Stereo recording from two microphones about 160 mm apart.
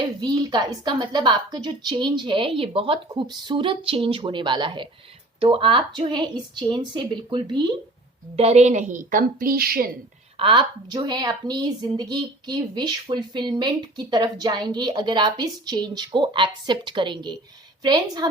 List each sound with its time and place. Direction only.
0.0 s a woman's voice: 25° right (ahead or behind)
8.4 s a woman's voice: 40° right (ahead or behind); by 9.9 s 70° right (ahead or behind)
10.3 s a woman's voice: 30° right (ahead or behind)